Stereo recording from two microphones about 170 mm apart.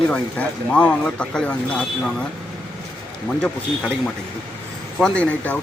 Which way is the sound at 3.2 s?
5° left (ahead or behind).